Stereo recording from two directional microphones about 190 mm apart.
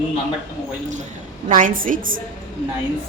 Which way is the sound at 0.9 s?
40° right (ahead or behind).